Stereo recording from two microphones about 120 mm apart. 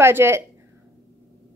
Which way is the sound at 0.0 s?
20° right (ahead or behind).